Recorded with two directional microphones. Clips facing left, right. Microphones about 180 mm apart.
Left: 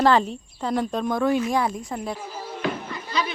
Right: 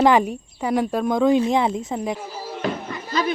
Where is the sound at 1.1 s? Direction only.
20° right (ahead or behind).